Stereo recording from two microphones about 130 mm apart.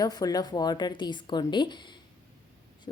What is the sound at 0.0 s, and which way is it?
Speech, 30° left (ahead or behind).